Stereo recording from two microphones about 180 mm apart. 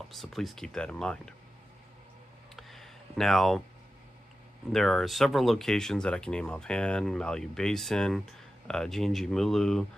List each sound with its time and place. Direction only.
0.1 s speech: centre (ahead or behind)
2.5 s a sound: centre (ahead or behind)
4.7 s speech: centre (ahead or behind)